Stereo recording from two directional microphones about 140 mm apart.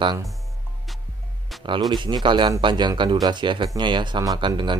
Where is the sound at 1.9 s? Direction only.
30° right (ahead or behind).